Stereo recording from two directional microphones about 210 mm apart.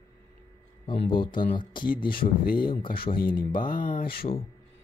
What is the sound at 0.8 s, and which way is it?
Speech, 25° left (ahead or behind).